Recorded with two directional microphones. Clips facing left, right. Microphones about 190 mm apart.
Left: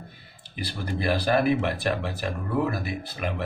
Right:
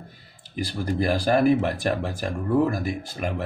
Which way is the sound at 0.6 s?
45° right (ahead or behind).